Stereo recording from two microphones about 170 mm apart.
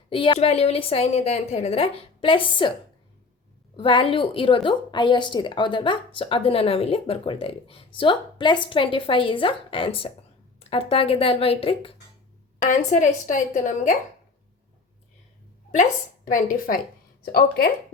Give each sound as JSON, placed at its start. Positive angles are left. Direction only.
{"t": 0.1, "sound": "a woman's voice", "side_deg": 30}
{"t": 3.8, "sound": "a woman's voice", "side_deg": 30}
{"t": 12.6, "sound": "a woman's voice", "side_deg": 45}
{"t": 15.7, "sound": "a woman's voice", "side_deg": 50}